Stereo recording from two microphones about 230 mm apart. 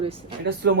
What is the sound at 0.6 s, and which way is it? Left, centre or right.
Speech, right.